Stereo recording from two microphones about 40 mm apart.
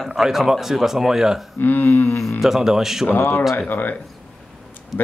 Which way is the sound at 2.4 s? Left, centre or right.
Centre.